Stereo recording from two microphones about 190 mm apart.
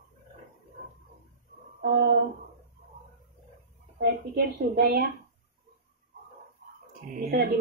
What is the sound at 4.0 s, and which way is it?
A woman's voice, 55° right (ahead or behind).